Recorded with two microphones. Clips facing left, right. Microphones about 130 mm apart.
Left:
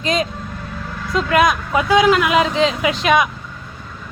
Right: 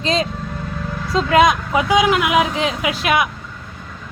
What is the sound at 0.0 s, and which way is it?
A woman's voice, 30° right (ahead or behind).